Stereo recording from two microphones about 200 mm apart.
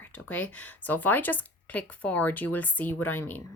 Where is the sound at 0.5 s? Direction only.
10° left (ahead or behind).